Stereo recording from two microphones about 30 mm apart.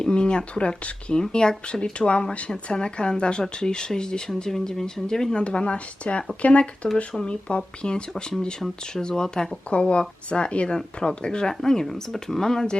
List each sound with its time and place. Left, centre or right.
0.0 s speech: left
5.3 s speech: left
6.9 s speech: left
9.0 s speech: left
9.6 s speech: left
11.2 s speech: left